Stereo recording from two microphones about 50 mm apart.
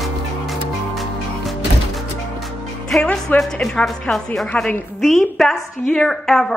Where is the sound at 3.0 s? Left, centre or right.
Left.